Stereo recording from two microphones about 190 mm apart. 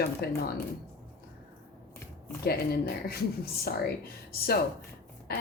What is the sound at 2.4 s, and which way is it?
Speech, 55° left (ahead or behind).